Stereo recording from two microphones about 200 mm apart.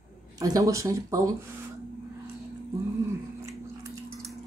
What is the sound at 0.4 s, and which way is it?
Speech, 15° right (ahead or behind).